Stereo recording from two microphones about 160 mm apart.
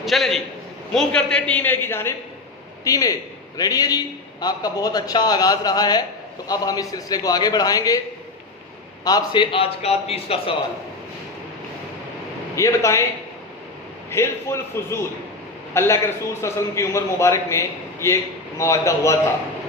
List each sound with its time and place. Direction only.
0.0 s a man's voice: centre (ahead or behind); by 8.0 s 20° left (ahead or behind)
9.0 s a man's voice: 25° left (ahead or behind)
12.5 s a man's voice: 20° left (ahead or behind)
14.1 s a man's voice: 15° left (ahead or behind)